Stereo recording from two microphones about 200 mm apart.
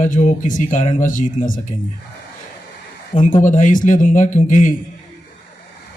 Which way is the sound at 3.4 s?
40° left (ahead or behind).